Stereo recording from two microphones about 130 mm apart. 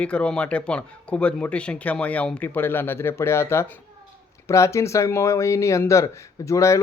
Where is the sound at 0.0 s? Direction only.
10° left (ahead or behind).